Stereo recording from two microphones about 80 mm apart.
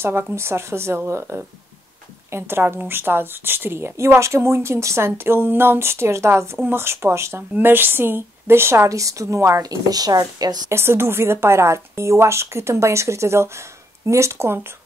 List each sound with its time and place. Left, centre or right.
0.0 s a woman's voice: right
10.7 s a woman's voice: right